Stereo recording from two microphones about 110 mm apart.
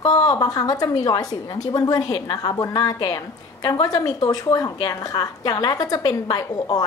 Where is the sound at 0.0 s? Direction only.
35° left (ahead or behind).